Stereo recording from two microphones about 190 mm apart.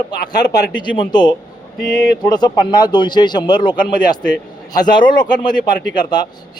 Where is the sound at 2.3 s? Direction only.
20° left (ahead or behind).